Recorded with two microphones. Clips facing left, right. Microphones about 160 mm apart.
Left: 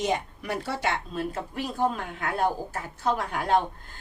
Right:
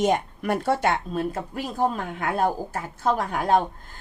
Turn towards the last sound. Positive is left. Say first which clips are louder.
# right 3 dB
turn(degrees=-45)  # may be behind; listen again after turning